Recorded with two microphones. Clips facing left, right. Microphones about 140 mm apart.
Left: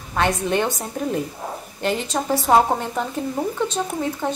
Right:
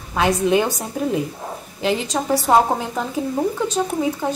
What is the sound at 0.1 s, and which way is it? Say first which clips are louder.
A woman's voice: right 4 dB; 5° right (ahead or behind).